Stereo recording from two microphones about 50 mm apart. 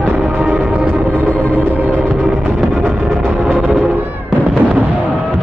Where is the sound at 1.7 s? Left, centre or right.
Right.